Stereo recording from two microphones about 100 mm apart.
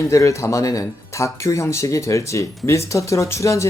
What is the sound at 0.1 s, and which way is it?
Speech, 30° left (ahead or behind).